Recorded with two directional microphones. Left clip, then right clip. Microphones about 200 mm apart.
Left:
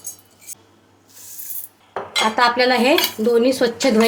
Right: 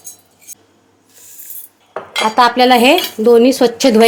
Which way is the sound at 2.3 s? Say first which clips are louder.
Right 8 dB; 45° right (ahead or behind).